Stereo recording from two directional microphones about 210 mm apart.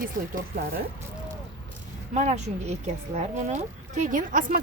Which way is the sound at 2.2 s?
35° right (ahead or behind).